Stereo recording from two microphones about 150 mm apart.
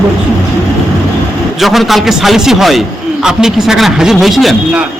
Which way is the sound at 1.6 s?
Centre (ahead or behind).